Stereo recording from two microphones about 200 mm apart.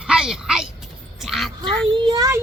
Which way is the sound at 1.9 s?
20° right (ahead or behind).